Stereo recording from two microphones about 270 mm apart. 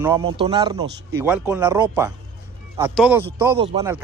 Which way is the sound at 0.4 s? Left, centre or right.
Centre.